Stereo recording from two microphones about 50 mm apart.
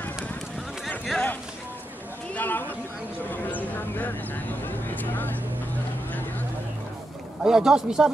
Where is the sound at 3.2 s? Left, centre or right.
Left.